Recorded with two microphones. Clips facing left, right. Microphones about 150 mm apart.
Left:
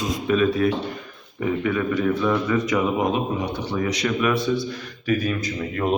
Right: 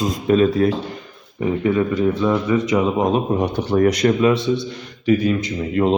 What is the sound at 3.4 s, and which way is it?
Speech, 50° right (ahead or behind).